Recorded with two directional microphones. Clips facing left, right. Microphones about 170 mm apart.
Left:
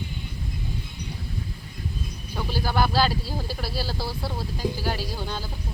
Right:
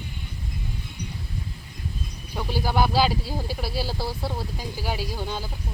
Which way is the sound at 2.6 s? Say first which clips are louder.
Right 1 dB; 20° right (ahead or behind).